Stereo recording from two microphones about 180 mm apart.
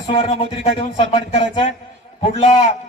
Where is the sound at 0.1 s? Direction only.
30° left (ahead or behind).